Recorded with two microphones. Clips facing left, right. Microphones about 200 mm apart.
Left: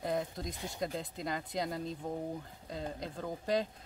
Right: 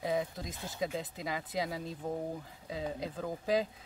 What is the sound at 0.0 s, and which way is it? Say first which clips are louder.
Speech: right 1 dB; centre (ahead or behind).